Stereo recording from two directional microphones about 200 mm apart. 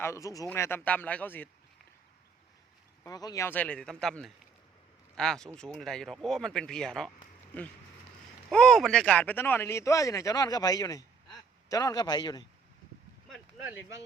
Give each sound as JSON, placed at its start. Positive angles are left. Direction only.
{"t": 0.0, "sound": "speech", "side_deg": 15}
{"t": 3.0, "sound": "speech", "side_deg": 20}
{"t": 8.4, "sound": "a man's voice", "side_deg": 0}